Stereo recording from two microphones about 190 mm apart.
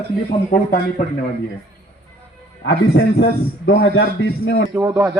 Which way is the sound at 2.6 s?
60° left (ahead or behind).